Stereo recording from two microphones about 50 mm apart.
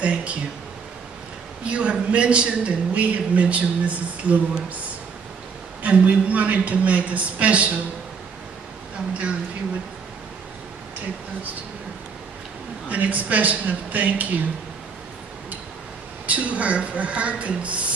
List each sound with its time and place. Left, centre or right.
0.0 s a man's voice: right
1.6 s a man's voice: right
5.8 s a man's voice: right
12.8 s speech: right
16.3 s a man's voice: right